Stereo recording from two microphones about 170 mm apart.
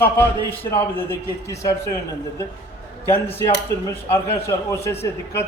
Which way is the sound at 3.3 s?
20° left (ahead or behind).